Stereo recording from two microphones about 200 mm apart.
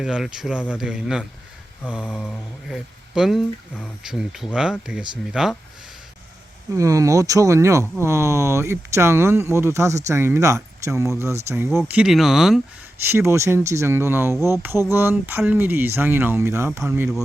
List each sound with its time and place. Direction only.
0.0 s speech: 5° right (ahead or behind)
6.7 s speech: 15° right (ahead or behind)
11.8 s speech: centre (ahead or behind)
13.1 s speech: 15° right (ahead or behind)